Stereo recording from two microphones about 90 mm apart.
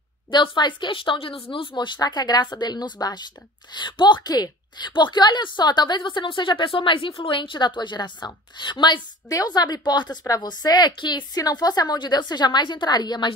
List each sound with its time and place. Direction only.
0.3 s a woman's voice: 60° left (ahead or behind)
9.3 s a woman's voice: 45° left (ahead or behind)